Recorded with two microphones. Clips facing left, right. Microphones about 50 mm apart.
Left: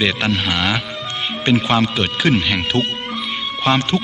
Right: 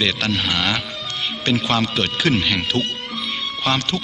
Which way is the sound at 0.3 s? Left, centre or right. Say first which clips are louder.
Left 2 dB; centre.